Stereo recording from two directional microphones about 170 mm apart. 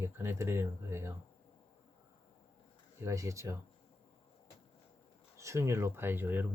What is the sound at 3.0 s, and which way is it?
Speech, 20° right (ahead or behind).